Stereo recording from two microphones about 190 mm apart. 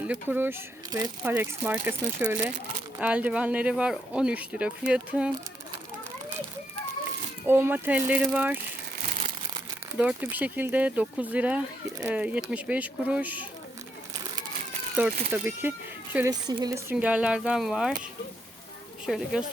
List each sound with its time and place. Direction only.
0.0 s speech: 10° right (ahead or behind)
1.3 s speech: 10° right (ahead or behind)
3.0 s speech: 5° right (ahead or behind)
7.4 s speech: 10° right (ahead or behind)
10.0 s speech: 10° right (ahead or behind)
15.0 s a woman's voice: 10° right (ahead or behind)
16.9 s speech: 5° right (ahead or behind)
19.0 s speech: centre (ahead or behind)